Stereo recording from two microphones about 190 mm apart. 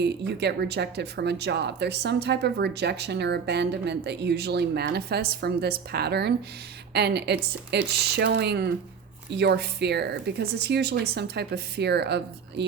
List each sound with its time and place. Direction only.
0.0 s speech: 60° right (ahead or behind)